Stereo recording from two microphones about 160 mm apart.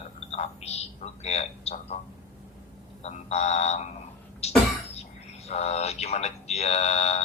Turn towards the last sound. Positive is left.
turn(degrees=40)  # may be behind; listen again after turning